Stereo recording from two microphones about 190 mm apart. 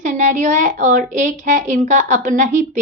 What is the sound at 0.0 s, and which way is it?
A woman's voice, 40° right (ahead or behind).